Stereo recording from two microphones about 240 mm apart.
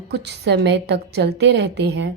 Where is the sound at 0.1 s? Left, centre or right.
Right.